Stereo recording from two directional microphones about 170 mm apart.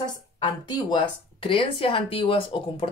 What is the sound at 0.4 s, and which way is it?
Speech, 25° left (ahead or behind).